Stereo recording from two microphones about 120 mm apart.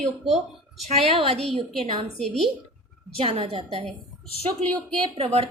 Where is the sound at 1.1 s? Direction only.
55° right (ahead or behind).